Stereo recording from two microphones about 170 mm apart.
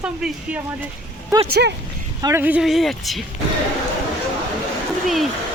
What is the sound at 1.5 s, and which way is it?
Speech, 75° right (ahead or behind).